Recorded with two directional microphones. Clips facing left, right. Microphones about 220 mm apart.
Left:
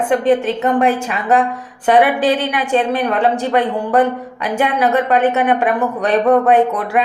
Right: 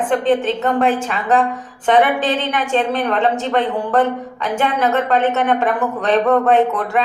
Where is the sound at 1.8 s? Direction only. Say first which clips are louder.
Left 2 dB; 5° left (ahead or behind).